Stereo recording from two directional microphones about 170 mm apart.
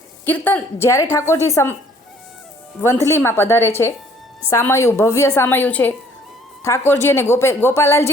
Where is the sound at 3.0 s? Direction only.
15° left (ahead or behind).